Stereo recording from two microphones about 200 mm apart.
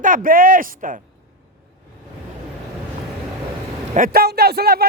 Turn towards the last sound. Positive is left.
turn(degrees=-50)  # may be behind; listen again after turning